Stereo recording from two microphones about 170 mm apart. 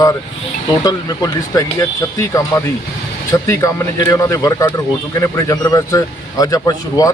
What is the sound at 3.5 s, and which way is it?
A man's voice, 15° left (ahead or behind).